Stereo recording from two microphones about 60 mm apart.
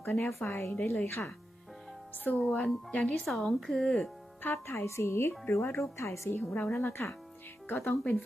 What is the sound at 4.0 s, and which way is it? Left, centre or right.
Music, left.